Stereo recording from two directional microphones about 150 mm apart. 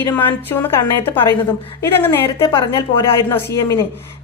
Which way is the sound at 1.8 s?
15° left (ahead or behind).